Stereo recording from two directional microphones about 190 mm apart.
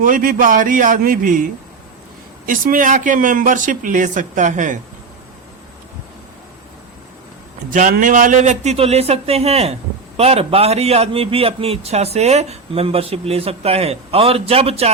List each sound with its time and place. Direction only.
0.0 s speech: 45° right (ahead or behind)
2.5 s speech: 45° right (ahead or behind)
7.7 s a man's voice: 45° right (ahead or behind)